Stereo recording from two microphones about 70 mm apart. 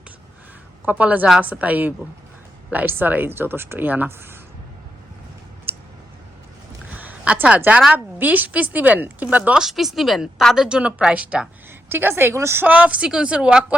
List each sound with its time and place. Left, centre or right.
0.9 s speech: right
5.7 s clicking: right
6.9 s a sound: right
7.9 s speech: right
9.6 s a woman's voice: centre
11.9 s a woman's voice: right
12.6 s speech: centre